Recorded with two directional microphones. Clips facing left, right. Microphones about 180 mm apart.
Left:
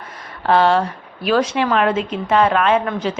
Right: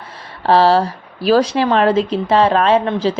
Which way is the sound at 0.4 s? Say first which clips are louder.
Right 3 dB; 35° right (ahead or behind).